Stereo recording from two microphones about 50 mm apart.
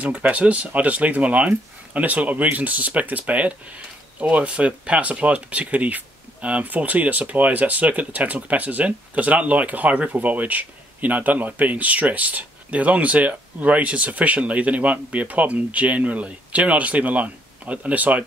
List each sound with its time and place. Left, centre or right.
0.0 s speech: right